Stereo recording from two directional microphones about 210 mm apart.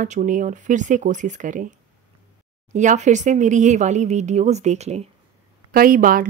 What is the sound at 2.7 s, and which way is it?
A woman's voice, 35° right (ahead or behind).